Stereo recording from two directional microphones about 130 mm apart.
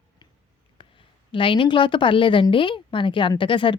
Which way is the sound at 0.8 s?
40° left (ahead or behind).